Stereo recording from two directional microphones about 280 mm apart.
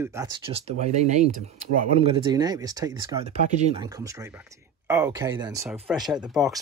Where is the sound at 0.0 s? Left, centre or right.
Centre.